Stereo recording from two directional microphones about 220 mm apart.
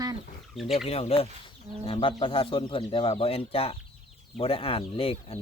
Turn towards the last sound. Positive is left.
turn(degrees=25)  # may be behind; listen again after turning